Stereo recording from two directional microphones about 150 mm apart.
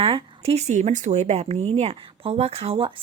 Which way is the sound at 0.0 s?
40° right (ahead or behind).